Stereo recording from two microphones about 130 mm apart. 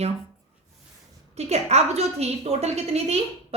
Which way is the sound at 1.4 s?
55° right (ahead or behind).